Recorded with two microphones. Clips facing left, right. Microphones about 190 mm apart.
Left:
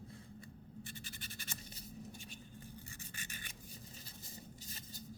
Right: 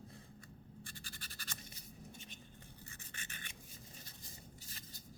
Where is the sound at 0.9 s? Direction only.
20° left (ahead or behind).